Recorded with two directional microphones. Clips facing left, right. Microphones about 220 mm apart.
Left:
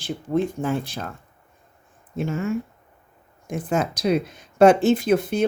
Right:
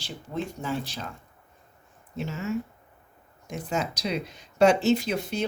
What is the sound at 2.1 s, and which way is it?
Speech, 50° left (ahead or behind).